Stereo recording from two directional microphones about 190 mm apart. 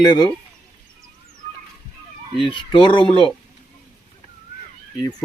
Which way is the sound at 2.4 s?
25° left (ahead or behind).